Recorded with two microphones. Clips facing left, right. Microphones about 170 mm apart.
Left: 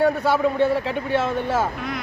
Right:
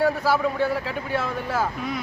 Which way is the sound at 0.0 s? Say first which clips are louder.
Left 2 dB; 25° left (ahead or behind).